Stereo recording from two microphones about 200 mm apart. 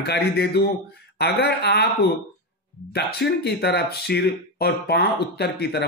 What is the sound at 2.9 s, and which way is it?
Speech, 55° left (ahead or behind).